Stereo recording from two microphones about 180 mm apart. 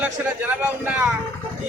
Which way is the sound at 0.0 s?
10° right (ahead or behind).